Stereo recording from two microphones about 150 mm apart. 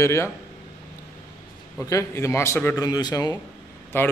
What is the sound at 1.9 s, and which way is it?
A man's voice, 20° left (ahead or behind).